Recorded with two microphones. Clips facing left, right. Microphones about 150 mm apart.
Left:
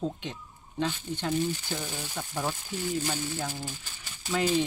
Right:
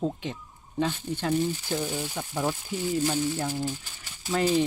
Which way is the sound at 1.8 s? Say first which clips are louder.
Right 5 dB; 5° right (ahead or behind).